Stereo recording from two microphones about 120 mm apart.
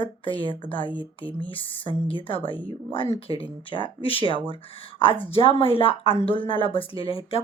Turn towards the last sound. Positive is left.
turn(degrees=55)  # may be behind; listen again after turning